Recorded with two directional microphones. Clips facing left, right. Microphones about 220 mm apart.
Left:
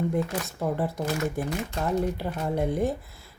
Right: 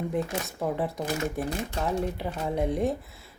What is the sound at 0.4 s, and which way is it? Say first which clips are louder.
A woman's voice: left 1 dB; centre (ahead or behind).